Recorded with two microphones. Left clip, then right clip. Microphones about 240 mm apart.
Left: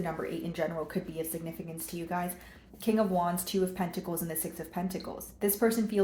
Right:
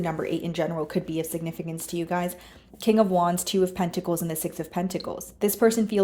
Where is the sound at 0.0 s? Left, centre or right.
Right.